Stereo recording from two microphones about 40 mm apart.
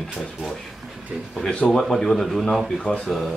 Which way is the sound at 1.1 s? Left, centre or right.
Right.